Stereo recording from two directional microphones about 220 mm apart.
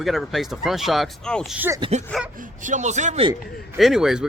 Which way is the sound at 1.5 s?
10° right (ahead or behind).